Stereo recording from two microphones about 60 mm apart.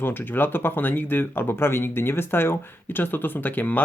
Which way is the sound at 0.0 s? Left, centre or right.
Left.